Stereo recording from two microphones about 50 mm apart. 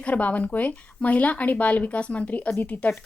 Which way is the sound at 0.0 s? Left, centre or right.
Left.